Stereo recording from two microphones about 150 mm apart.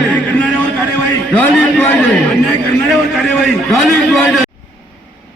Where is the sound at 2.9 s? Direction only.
Centre (ahead or behind).